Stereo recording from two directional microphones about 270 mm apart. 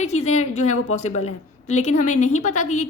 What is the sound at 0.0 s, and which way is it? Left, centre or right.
A woman's voice, left.